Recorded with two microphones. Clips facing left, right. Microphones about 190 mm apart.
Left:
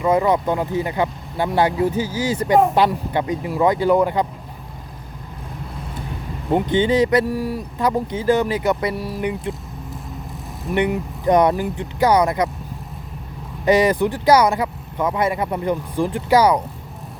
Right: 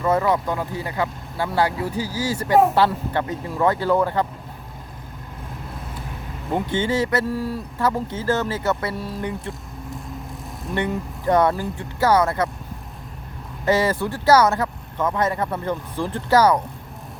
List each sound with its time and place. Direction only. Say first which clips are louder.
0.0 s speech: left 3 dB; 15° left (ahead or behind)
6.5 s speech: left 5 dB; 15° left (ahead or behind)
10.7 s speech: left 5 dB; 15° left (ahead or behind)
13.7 s speech: left 4 dB; 15° left (ahead or behind)